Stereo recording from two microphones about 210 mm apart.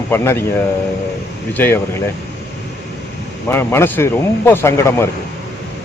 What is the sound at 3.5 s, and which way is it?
Speech, 10° left (ahead or behind).